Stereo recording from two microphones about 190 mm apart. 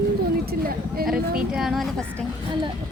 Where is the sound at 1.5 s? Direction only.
Centre (ahead or behind).